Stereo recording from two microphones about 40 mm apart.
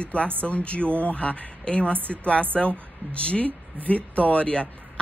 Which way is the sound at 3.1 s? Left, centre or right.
Left.